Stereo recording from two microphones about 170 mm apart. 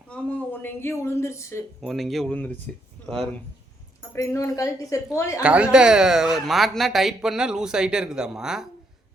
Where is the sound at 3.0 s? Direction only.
10° left (ahead or behind).